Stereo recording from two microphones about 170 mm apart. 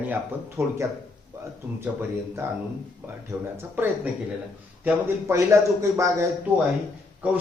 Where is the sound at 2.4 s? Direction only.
15° right (ahead or behind).